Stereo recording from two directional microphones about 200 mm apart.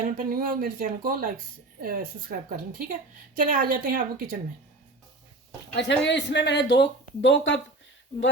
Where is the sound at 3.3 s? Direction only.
45° right (ahead or behind).